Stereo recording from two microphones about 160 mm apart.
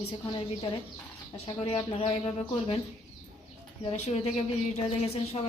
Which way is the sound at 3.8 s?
40° left (ahead or behind).